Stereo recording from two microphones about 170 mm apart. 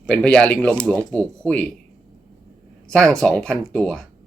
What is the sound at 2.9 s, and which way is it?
Speech, 5° left (ahead or behind).